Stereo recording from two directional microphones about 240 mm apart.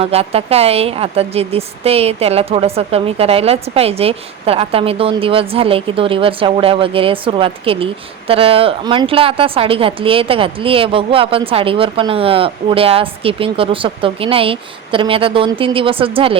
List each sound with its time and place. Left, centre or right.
0.0 s speech: right